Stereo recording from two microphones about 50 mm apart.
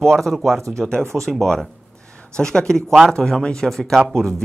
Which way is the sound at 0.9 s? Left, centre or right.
Centre.